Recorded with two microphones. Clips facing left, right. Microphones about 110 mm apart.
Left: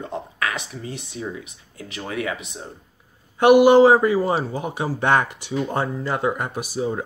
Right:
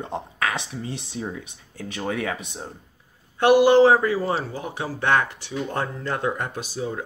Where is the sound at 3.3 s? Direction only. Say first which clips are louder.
Left 3 dB; 15° left (ahead or behind).